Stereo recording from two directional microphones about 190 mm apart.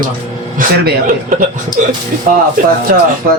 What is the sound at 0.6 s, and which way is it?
Speech, 45° right (ahead or behind).